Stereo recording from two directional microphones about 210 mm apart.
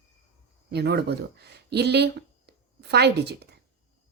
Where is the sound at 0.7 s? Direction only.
50° right (ahead or behind).